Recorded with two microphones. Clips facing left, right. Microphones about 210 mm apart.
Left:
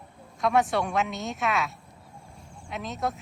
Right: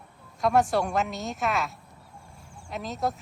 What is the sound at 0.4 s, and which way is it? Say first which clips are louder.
Speech: right 1 dB; centre (ahead or behind).